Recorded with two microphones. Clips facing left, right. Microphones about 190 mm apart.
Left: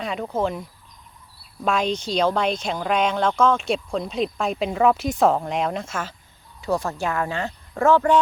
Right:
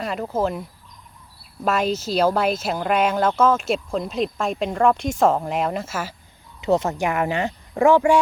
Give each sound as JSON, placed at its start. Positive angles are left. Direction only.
{"t": 0.0, "sound": "speech", "side_deg": 0}
{"t": 6.6, "sound": "speech", "side_deg": -20}